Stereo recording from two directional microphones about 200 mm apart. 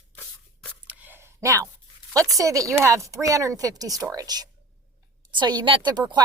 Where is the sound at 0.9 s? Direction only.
10° right (ahead or behind).